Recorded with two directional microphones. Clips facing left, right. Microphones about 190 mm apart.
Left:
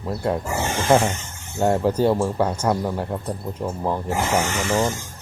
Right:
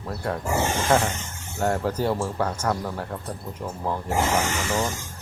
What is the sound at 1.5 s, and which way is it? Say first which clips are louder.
Speech: left 5 dB; 20° left (ahead or behind).